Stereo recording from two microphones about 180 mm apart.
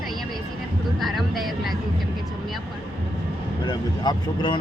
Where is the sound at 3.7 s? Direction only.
25° left (ahead or behind).